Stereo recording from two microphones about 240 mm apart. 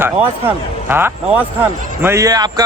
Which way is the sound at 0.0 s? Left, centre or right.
Centre.